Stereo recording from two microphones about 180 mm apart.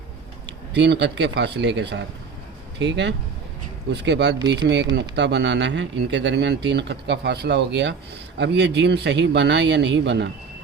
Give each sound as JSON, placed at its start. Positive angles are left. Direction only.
{"t": 0.4, "sound": "speech", "side_deg": -70}